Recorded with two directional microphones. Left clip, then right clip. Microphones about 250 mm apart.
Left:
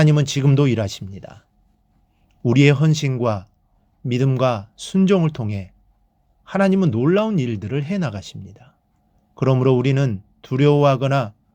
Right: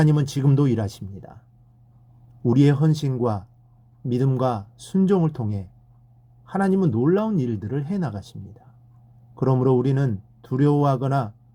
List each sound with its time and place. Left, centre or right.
0.0 s speech: centre
2.4 s a man's voice: centre